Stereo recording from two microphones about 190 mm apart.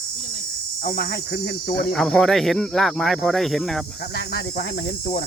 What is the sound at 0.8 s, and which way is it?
Speech, 55° left (ahead or behind).